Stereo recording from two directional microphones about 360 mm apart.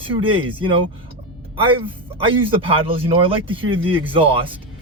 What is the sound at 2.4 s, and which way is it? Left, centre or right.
Speech, centre.